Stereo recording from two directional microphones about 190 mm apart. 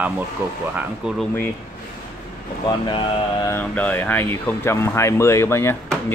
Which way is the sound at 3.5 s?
10° left (ahead or behind).